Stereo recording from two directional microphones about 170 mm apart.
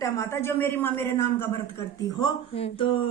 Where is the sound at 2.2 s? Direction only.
30° left (ahead or behind).